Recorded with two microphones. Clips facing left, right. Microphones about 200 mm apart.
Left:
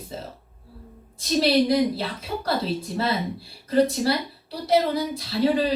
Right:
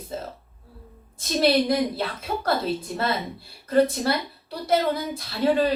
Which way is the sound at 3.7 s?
55° right (ahead or behind).